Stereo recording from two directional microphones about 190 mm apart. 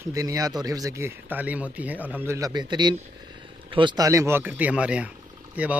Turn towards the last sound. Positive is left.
turn(degrees=-5)  # may be behind; listen again after turning